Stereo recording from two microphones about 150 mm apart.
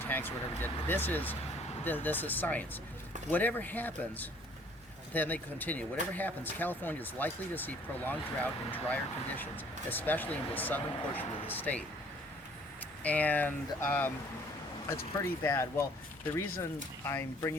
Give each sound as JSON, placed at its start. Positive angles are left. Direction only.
{"t": 0.0, "sound": "speech", "side_deg": 15}
{"t": 13.0, "sound": "speech", "side_deg": 10}
{"t": 17.1, "sound": "speech", "side_deg": 15}